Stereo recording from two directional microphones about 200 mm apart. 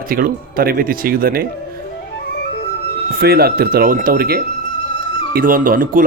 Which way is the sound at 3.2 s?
50° right (ahead or behind).